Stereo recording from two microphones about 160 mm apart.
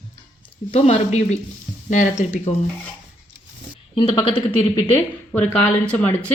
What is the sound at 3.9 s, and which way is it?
Speech, 30° left (ahead or behind).